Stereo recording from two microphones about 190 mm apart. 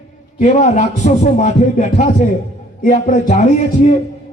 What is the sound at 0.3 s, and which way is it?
A man's voice, 40° left (ahead or behind).